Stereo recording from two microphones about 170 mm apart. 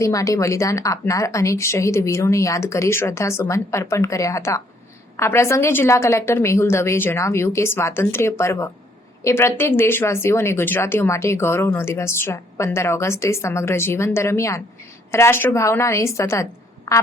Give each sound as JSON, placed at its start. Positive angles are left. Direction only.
{"t": 0.0, "sound": "a woman's voice", "side_deg": 20}